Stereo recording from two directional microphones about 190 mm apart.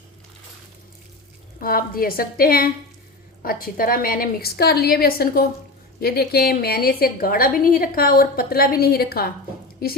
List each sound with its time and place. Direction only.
1.6 s a woman's voice: 50° left (ahead or behind)